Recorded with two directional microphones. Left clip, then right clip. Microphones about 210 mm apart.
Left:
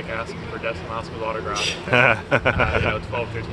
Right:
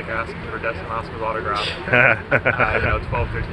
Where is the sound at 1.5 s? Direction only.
20° left (ahead or behind).